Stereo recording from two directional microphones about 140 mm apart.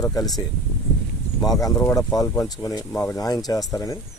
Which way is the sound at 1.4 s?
25° left (ahead or behind).